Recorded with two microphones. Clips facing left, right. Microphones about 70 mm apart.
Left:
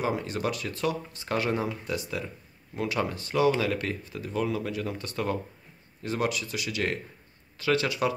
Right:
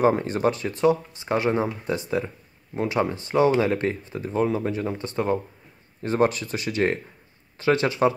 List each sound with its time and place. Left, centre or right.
0.0 s speech: right
6.0 s speech: right